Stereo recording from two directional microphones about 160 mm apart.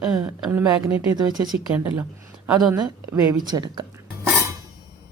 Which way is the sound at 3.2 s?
25° right (ahead or behind).